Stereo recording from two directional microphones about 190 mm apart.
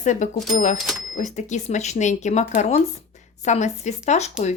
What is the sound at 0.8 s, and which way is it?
Cash register, centre (ahead or behind).